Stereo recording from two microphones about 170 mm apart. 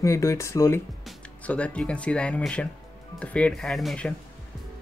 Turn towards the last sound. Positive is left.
turn(degrees=5)  # may be behind; listen again after turning